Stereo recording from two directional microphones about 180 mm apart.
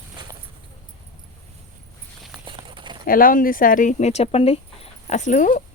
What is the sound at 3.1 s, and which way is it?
Speech, 50° left (ahead or behind).